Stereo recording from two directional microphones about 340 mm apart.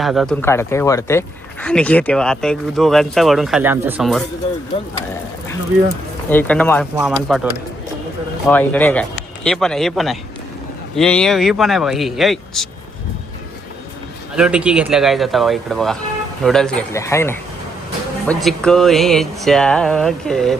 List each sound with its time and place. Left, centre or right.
0.0 s speech: centre
6.3 s speech: centre
8.4 s speech: centre
14.3 s speech: centre